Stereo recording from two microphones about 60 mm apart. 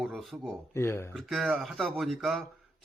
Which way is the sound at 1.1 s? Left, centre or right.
Centre.